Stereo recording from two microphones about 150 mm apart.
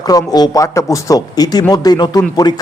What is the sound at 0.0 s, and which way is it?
A man's voice, 25° left (ahead or behind).